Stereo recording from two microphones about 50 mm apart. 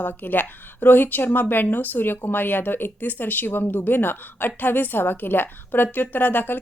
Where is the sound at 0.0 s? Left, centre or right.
Left.